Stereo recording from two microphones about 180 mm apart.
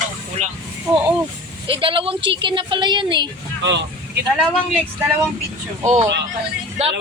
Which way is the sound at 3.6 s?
80° right.